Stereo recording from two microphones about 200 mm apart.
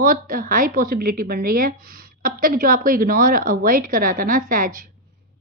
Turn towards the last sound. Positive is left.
turn(degrees=-45)  # may be behind; listen again after turning